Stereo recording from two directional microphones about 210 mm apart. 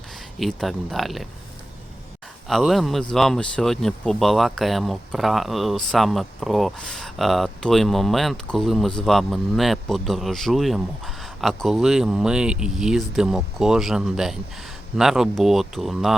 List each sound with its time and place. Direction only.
0.3 s speech: centre (ahead or behind)
2.5 s speech: centre (ahead or behind)